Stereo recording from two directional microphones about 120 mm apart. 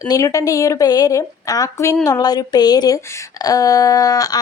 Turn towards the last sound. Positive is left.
turn(degrees=30)  # may be behind; listen again after turning